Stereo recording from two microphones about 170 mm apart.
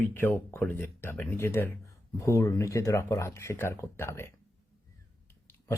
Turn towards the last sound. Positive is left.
turn(degrees=15)  # may be behind; listen again after turning